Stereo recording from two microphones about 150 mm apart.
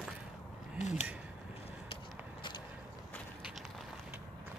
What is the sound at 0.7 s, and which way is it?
Speech, 50° left (ahead or behind).